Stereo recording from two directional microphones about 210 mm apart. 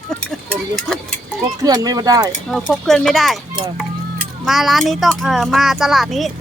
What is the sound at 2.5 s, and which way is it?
Speech, centre (ahead or behind).